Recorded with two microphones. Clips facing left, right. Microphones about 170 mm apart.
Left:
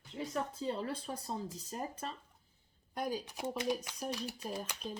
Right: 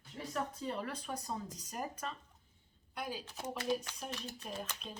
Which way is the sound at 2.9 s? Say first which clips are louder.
Left 5 dB; 45° left (ahead or behind).